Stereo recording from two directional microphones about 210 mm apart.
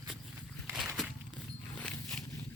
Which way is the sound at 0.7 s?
Centre (ahead or behind).